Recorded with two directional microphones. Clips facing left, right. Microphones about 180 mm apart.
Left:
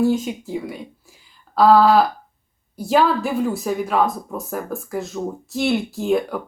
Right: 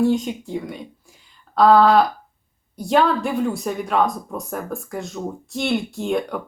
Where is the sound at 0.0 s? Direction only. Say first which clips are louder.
Even; 5° left (ahead or behind).